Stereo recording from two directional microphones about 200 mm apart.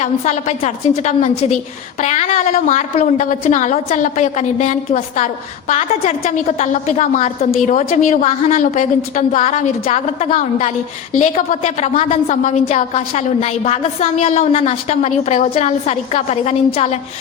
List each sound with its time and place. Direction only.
0.0 s a woman's voice: 35° left (ahead or behind)